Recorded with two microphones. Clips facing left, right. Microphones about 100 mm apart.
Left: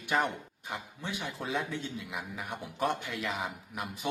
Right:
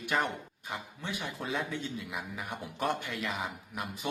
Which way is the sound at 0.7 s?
Centre (ahead or behind).